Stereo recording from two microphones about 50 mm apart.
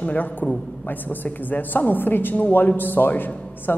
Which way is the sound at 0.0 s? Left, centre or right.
Left.